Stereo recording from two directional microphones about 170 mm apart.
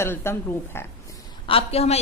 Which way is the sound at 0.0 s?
15° left (ahead or behind).